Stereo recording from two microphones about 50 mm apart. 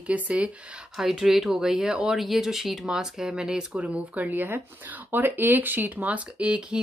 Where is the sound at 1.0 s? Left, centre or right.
Centre.